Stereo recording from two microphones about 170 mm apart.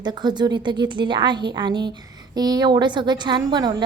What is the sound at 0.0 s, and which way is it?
A woman's voice, 25° right (ahead or behind).